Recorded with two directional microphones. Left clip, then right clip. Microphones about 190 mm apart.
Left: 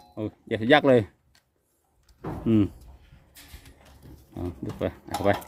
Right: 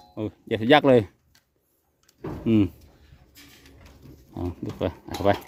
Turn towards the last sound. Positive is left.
turn(degrees=-15)  # may be behind; listen again after turning